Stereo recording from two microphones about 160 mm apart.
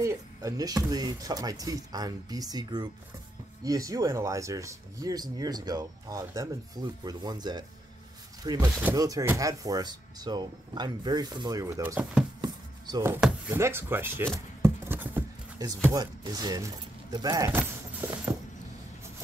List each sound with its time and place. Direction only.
0.0 s speech: 20° right (ahead or behind)
12.4 s chopping: 25° right (ahead or behind)
13.1 s speech: 15° right (ahead or behind)
14.6 s a sound: 10° right (ahead or behind)
15.6 s speech: 25° right (ahead or behind)